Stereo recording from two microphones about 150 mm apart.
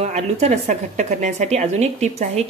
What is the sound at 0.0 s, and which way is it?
A woman's voice, 50° right (ahead or behind).